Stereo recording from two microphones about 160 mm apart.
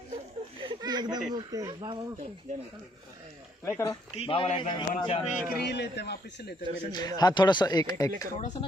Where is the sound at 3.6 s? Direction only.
15° left (ahead or behind).